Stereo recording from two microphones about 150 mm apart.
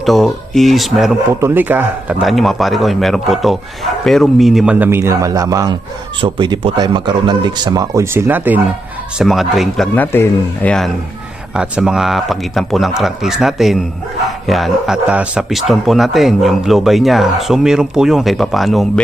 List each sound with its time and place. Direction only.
0.0 s a man's voice: centre (ahead or behind)
1.4 s speech: 15° right (ahead or behind)
2.2 s a man's voice: centre (ahead or behind)
9.1 s a man's voice: centre (ahead or behind)
9.9 s a man's voice: 15° left (ahead or behind)